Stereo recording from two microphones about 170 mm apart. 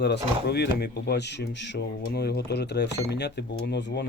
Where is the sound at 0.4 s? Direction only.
75° left (ahead or behind).